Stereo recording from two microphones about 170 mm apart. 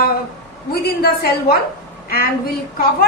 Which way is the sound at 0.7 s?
65° left (ahead or behind).